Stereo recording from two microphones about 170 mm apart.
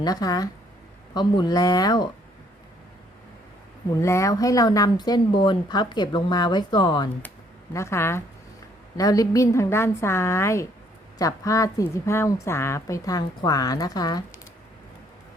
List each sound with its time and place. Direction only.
0.0 s a woman's voice: 20° left (ahead or behind)
3.8 s a woman's voice: 20° left (ahead or behind)
7.7 s a woman's voice: 15° left (ahead or behind)